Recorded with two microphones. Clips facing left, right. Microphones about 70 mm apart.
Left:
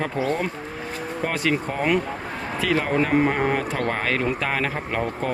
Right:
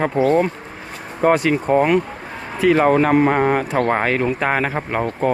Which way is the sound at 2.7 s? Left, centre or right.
Right.